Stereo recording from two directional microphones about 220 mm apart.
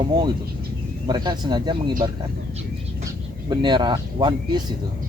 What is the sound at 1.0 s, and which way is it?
Speech, 20° right (ahead or behind).